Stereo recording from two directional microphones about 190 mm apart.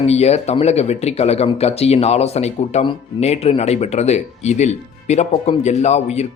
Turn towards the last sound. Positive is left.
turn(degrees=35)  # may be behind; listen again after turning